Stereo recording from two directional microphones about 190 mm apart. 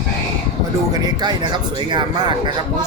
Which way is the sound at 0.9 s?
20° right (ahead or behind).